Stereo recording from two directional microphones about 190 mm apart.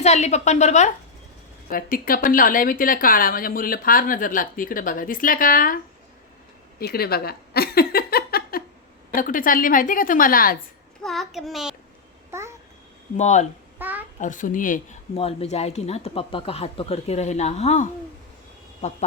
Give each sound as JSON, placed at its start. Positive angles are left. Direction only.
{"t": 0.0, "sound": "speech", "side_deg": 35}
{"t": 1.7, "sound": "a woman's voice", "side_deg": 50}
{"t": 6.7, "sound": "a sound", "side_deg": 55}
{"t": 9.1, "sound": "a woman's voice", "side_deg": 45}
{"t": 11.0, "sound": "a child's voice", "side_deg": 0}
{"t": 12.3, "sound": "babbling", "side_deg": -15}
{"t": 13.1, "sound": "speech", "side_deg": 35}
{"t": 13.7, "sound": "a child's voice", "side_deg": -10}
{"t": 14.2, "sound": "a woman's voice", "side_deg": 40}
{"t": 15.1, "sound": "speech", "side_deg": 30}